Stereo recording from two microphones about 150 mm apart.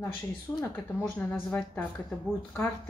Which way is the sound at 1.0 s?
15° left (ahead or behind).